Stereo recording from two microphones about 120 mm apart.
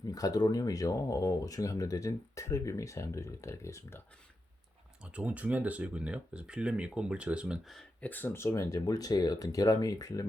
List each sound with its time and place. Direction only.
0.1 s speech: 30° left (ahead or behind)
5.1 s speech: 10° right (ahead or behind)
8.0 s speech: 15° left (ahead or behind)